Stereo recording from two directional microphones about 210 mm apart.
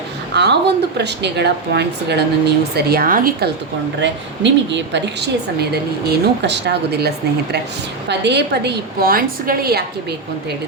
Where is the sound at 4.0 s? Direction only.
55° right (ahead or behind).